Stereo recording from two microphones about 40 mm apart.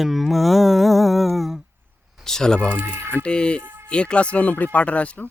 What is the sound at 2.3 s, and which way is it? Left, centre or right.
Speech, centre.